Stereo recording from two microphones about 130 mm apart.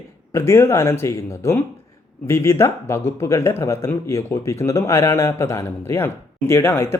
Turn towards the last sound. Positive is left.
turn(degrees=20)  # may be behind; listen again after turning